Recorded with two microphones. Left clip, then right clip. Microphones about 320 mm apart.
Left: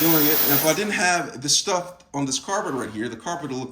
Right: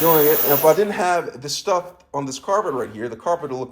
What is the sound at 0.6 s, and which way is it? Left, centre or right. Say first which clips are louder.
Speech: right 5 dB; centre.